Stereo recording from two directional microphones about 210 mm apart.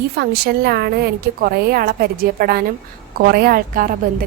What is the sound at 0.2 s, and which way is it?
A woman's voice, 50° right (ahead or behind).